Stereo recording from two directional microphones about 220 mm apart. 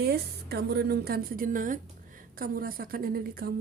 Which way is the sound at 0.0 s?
45° right (ahead or behind).